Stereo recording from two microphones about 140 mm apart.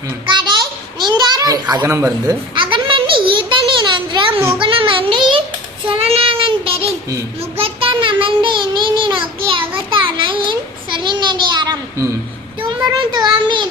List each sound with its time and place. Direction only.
0.9 s children playing: 30° right (ahead or behind)
1.9 s speech: 20° right (ahead or behind)
2.6 s a sound: 35° right (ahead or behind)
5.9 s child singing: 45° right (ahead or behind)